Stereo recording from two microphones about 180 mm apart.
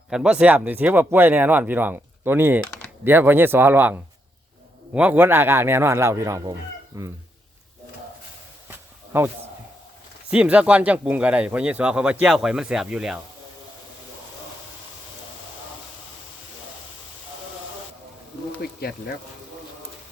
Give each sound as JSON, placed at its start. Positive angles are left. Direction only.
{"t": 0.1, "sound": "speech", "side_deg": -5}
{"t": 4.9, "sound": "speech", "side_deg": -10}
{"t": 9.1, "sound": "speech", "side_deg": -10}
{"t": 10.3, "sound": "speech", "side_deg": -5}
{"t": 18.6, "sound": "speech", "side_deg": 60}